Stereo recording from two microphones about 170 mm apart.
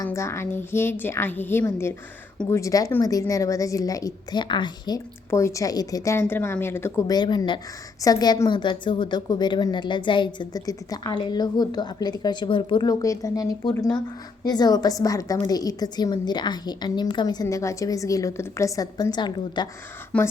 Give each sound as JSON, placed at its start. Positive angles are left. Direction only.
{"t": 0.0, "sound": "a woman's voice", "side_deg": 15}
{"t": 20.1, "sound": "a woman's voice", "side_deg": 5}